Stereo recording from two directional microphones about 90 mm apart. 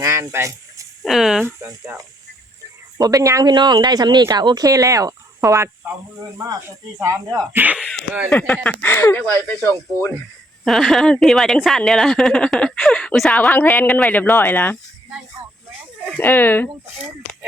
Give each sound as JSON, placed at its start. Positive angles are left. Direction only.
{"t": 0.0, "sound": "speech", "side_deg": -35}
{"t": 1.0, "sound": "speech", "side_deg": -5}
{"t": 1.5, "sound": "speech", "side_deg": -15}
{"t": 3.0, "sound": "speech", "side_deg": -40}
{"t": 3.5, "sound": "speech", "side_deg": -55}
{"t": 7.5, "sound": "speech", "side_deg": -20}
{"t": 7.8, "sound": "speech", "side_deg": 5}
{"t": 8.6, "sound": "speech", "side_deg": 20}
{"t": 10.6, "sound": "speech", "side_deg": 5}
{"t": 13.5, "sound": "speech", "side_deg": 20}
{"t": 16.1, "sound": "speech", "side_deg": 20}